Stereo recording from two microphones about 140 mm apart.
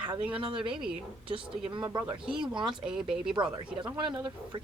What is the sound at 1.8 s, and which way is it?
Speech, 15° right (ahead or behind).